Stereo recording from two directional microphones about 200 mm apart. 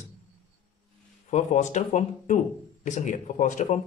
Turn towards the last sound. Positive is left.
turn(degrees=40)  # may be behind; listen again after turning